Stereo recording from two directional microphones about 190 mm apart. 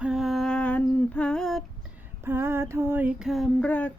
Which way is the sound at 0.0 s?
Centre (ahead or behind).